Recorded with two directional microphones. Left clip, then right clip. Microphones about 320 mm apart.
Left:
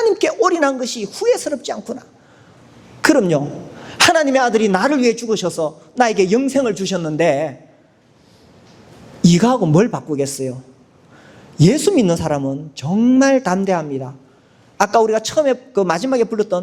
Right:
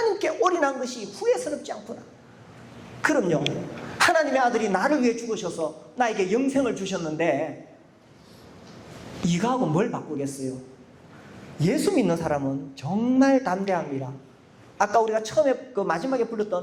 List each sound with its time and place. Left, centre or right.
0.0 s speech: left
3.0 s a man's voice: left
9.2 s a man's voice: left
11.5 s a woman's voice: left